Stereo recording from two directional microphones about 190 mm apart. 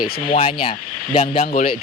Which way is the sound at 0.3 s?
30° left (ahead or behind).